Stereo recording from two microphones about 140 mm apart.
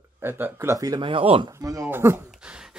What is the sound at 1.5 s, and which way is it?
Speech, 20° right (ahead or behind).